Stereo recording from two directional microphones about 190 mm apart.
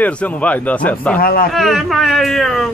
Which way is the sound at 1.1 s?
50° left (ahead or behind).